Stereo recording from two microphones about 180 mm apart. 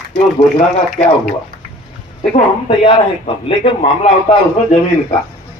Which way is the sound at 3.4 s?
30° left (ahead or behind).